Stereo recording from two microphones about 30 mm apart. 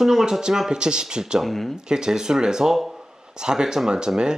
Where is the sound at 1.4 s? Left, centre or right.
Centre.